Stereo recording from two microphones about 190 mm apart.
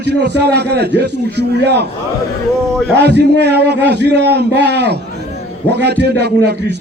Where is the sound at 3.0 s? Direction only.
60° right (ahead or behind).